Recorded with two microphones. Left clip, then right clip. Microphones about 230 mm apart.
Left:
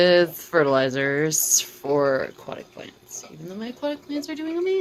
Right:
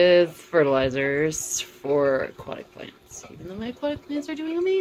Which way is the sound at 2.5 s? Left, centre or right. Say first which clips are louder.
Even; left.